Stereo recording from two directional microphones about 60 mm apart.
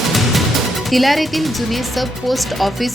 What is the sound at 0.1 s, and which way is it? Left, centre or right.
Speech, centre.